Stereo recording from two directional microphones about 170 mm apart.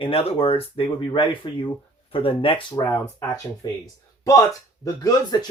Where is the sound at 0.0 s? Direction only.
35° left (ahead or behind).